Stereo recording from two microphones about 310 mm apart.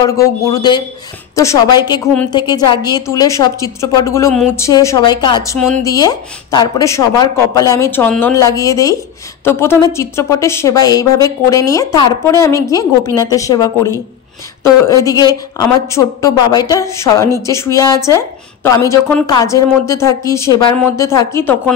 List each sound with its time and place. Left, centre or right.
0.0 s a woman's voice: centre
15.0 s a woman's voice: centre